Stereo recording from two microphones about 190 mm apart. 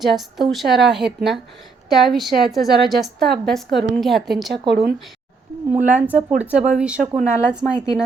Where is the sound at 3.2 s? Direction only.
60° right (ahead or behind).